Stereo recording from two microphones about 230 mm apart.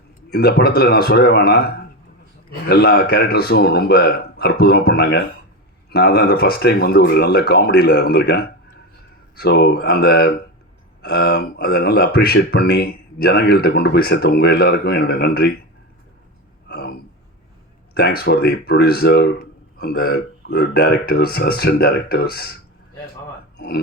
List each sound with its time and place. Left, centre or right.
0.3 s speech: left
2.6 s speech: left
16.6 s a sound: left
17.9 s speech: left
23.6 s speech: left